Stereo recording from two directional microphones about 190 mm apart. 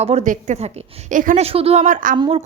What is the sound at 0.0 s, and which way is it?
A woman's voice, 35° right (ahead or behind).